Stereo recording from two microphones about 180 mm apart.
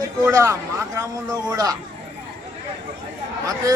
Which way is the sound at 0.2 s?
15° right (ahead or behind).